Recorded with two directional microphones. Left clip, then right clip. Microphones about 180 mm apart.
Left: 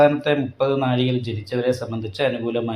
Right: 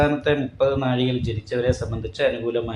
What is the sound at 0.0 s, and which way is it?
Speech, 35° left (ahead or behind).